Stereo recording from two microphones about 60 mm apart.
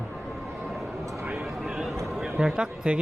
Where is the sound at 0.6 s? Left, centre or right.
Centre.